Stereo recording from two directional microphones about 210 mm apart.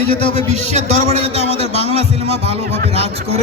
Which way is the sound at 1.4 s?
30° left (ahead or behind).